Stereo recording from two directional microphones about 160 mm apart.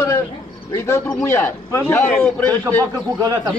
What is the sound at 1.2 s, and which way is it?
A man's voice, 15° left (ahead or behind).